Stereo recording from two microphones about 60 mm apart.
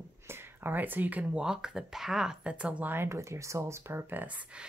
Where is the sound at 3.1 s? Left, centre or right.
Right.